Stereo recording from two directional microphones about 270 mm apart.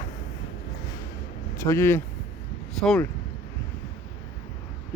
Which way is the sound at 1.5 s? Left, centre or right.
Centre.